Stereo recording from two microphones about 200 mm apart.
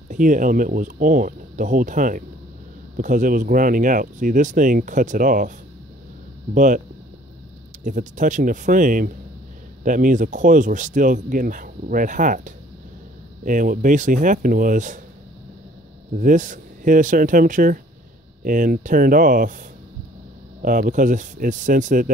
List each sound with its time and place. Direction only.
0.1 s speech: 40° right (ahead or behind)
6.5 s speech: 40° right (ahead or behind)
7.8 s speech: 40° right (ahead or behind)
16.2 s speech: 40° right (ahead or behind)
20.6 s speech: 40° right (ahead or behind)